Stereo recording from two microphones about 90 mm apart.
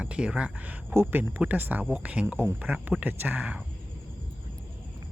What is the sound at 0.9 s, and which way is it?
Speech, 25° right (ahead or behind).